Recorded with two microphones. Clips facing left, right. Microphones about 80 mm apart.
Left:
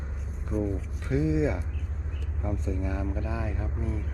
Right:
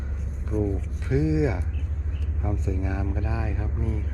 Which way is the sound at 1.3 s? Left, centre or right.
Right.